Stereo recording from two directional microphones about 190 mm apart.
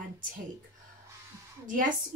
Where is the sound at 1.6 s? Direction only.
45° right (ahead or behind).